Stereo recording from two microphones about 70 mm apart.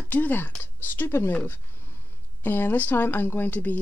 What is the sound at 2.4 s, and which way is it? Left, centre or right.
Speech, left.